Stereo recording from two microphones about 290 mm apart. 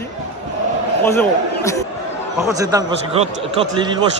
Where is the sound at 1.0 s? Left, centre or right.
Centre.